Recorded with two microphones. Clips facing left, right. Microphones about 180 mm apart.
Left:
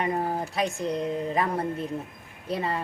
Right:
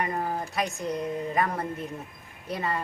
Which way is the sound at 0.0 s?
30° left (ahead or behind).